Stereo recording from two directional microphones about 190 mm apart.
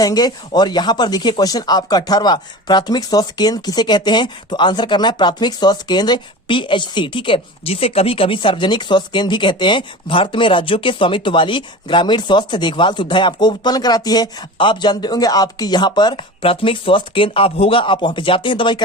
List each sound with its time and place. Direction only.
0.0 s speech: 20° left (ahead or behind)